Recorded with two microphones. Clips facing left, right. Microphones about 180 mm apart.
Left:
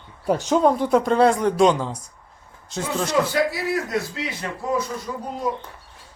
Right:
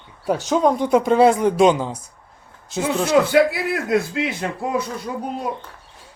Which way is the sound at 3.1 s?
60° right (ahead or behind).